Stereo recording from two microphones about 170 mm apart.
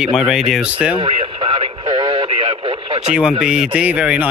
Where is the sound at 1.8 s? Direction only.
30° right (ahead or behind).